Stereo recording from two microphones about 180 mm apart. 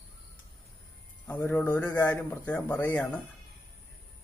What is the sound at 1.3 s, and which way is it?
Speech, 10° left (ahead or behind).